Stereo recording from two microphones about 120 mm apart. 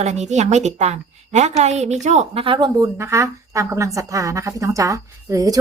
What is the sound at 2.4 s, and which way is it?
Speech, 45° right (ahead or behind).